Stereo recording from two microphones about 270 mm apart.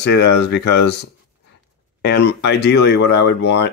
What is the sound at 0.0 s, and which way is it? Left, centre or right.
Speech, left.